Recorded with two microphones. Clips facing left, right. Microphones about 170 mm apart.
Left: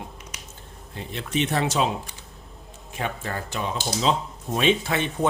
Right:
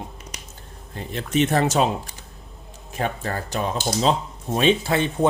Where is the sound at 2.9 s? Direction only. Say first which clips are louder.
Right 4 dB; 40° right (ahead or behind).